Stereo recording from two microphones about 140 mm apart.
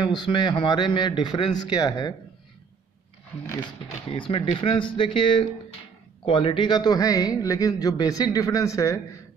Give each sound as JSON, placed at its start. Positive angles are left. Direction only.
{"t": 0.0, "sound": "a man's voice", "side_deg": 30}
{"t": 3.5, "sound": "a man's voice", "side_deg": 35}